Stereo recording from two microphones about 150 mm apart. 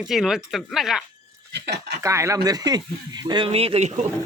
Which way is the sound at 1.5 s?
90° right.